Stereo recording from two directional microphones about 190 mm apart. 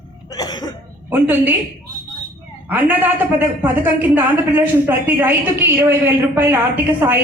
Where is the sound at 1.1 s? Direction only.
10° right (ahead or behind).